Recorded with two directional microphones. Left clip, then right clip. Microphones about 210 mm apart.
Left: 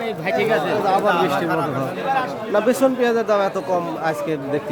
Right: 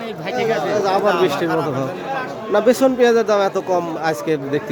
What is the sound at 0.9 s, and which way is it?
A man's voice, 15° right (ahead or behind).